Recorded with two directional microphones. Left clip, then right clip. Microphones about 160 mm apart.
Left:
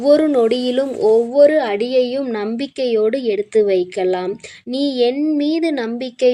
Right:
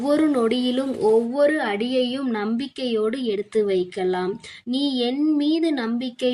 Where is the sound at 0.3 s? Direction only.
25° left (ahead or behind).